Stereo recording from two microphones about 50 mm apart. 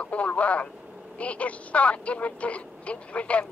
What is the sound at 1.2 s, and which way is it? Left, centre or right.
Speech, left.